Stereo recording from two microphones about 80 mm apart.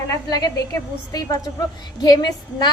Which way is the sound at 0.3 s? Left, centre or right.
Left.